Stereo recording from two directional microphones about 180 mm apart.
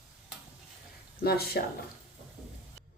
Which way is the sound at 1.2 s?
60° left (ahead or behind).